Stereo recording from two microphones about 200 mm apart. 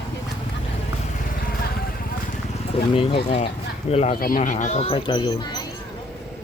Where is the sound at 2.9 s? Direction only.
25° left (ahead or behind).